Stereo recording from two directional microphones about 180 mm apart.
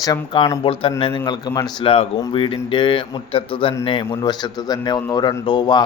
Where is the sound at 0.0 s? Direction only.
20° left (ahead or behind).